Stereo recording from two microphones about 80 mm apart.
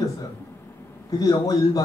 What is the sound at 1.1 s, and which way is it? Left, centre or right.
Speech, left.